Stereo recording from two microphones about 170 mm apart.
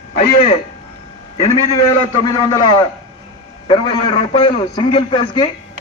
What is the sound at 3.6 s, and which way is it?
A man's voice, 25° left (ahead or behind).